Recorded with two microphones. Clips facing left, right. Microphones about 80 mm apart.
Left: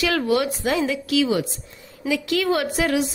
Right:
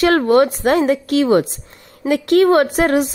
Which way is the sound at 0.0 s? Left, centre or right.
Right.